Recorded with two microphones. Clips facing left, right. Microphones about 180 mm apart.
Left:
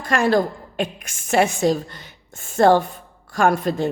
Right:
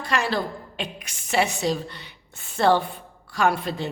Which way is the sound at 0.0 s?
50° left (ahead or behind).